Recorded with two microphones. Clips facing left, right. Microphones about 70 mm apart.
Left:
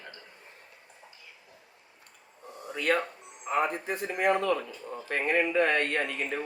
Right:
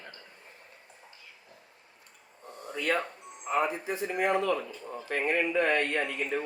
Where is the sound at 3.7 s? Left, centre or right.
Left.